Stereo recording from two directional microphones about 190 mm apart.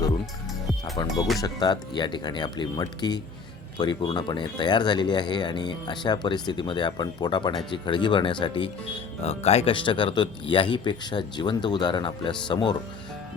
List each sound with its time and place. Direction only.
1.0 s speech: 20° left (ahead or behind)